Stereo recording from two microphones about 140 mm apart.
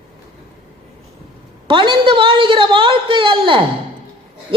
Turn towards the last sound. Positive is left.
turn(degrees=-35)  # may be behind; listen again after turning